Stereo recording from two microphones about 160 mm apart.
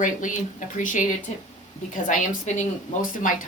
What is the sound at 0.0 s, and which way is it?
Speech, 55° left (ahead or behind).